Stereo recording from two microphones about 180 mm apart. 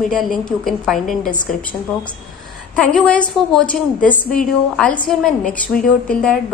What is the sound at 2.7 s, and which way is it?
A woman's voice, 5° left (ahead or behind).